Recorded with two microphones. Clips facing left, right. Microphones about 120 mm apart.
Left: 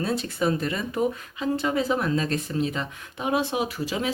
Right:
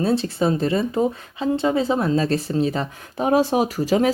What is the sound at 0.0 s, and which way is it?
Speech, 30° right (ahead or behind).